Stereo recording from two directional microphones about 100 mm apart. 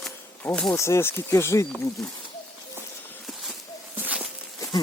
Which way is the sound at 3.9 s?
15° right (ahead or behind).